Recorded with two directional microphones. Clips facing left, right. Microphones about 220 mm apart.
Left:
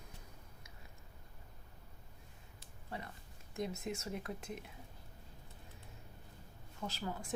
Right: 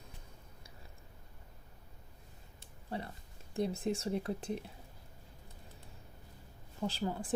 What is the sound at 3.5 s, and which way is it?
Speech, 30° right (ahead or behind).